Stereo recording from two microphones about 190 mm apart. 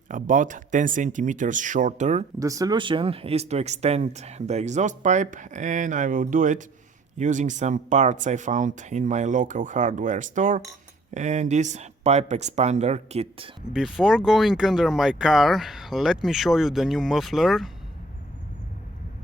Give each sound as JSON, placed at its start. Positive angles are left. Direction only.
{"t": 0.1, "sound": "speech", "side_deg": -45}
{"t": 2.4, "sound": "speech", "side_deg": -20}
{"t": 13.7, "sound": "speech", "side_deg": -5}